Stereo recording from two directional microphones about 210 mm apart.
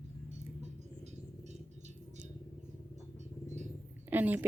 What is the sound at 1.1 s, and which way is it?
Music, 35° right (ahead or behind).